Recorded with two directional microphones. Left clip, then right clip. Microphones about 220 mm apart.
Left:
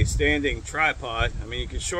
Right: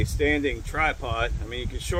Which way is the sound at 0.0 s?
5° right (ahead or behind).